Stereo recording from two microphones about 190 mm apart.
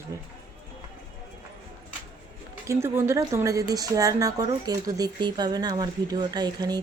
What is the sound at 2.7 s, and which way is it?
Speech, 15° right (ahead or behind).